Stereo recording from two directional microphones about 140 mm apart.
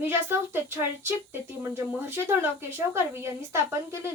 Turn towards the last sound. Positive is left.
turn(degrees=-20)  # may be behind; listen again after turning